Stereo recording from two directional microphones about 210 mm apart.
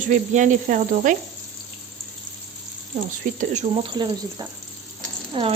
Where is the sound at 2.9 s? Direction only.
35° right (ahead or behind).